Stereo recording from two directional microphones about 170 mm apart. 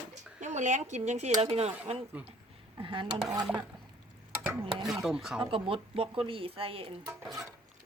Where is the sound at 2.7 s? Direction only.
30° right (ahead or behind).